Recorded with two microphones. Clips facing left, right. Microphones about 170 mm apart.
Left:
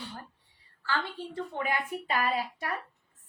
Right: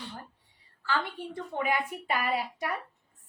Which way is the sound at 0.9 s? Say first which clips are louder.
Right 1 dB; 15° right (ahead or behind).